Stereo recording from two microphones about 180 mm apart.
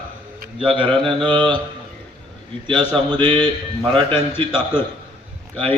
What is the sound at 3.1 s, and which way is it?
Mantra, 25° right (ahead or behind).